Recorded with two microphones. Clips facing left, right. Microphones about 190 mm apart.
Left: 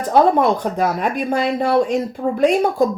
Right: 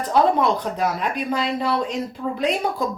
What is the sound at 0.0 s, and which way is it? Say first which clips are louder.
Speech: left 4 dB; 50° left (ahead or behind).